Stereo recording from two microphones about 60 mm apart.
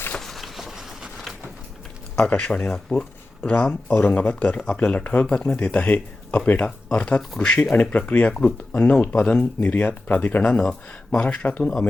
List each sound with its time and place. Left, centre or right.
0.2 s a sound: centre
2.1 s speech: centre
7.8 s speech: left
9.6 s speech: left
10.4 s speech: centre
11.2 s speech: left